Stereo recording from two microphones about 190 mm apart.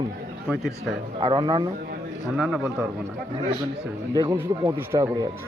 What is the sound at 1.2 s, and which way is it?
Speech, 25° right (ahead or behind).